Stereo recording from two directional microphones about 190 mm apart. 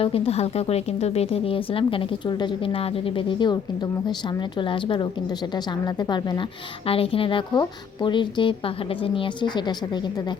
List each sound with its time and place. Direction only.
0.0 s speech: 30° left (ahead or behind)